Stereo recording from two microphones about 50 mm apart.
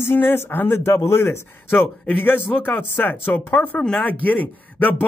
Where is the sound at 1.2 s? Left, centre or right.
Left.